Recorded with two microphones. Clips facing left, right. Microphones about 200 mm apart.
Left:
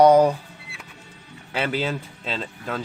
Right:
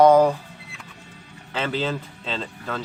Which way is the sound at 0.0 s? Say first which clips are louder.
Even; 15° left (ahead or behind).